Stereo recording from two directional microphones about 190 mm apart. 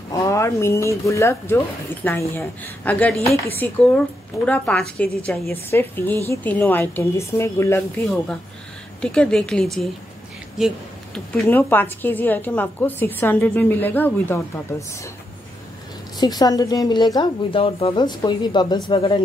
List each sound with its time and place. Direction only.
0.1 s a woman's voice: 15° left (ahead or behind)
9.0 s a woman's voice: 5° left (ahead or behind)
11.1 s a woman's voice: 10° left (ahead or behind)
16.2 s a woman's voice: 20° left (ahead or behind)